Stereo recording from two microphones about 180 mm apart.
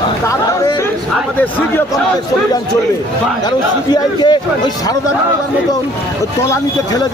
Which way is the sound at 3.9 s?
25° left (ahead or behind).